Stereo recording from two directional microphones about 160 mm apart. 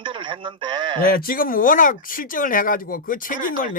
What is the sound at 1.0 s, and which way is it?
Speech, 65° left (ahead or behind).